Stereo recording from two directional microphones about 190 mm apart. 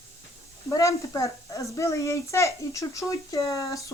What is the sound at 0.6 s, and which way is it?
A child's voice, 15° left (ahead or behind).